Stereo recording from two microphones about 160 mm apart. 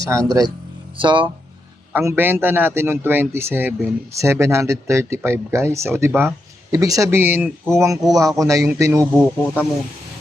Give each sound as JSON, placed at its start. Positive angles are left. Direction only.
{"t": 0.0, "sound": "speech", "side_deg": -20}
{"t": 1.9, "sound": "a man's voice", "side_deg": -15}